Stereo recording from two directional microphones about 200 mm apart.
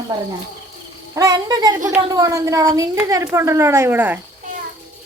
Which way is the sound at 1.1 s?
20° right (ahead or behind).